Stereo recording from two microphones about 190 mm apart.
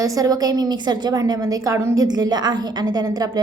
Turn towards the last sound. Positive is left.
turn(degrees=-20)  # may be behind; listen again after turning